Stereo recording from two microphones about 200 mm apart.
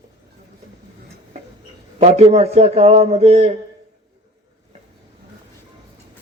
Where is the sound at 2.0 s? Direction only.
35° right (ahead or behind).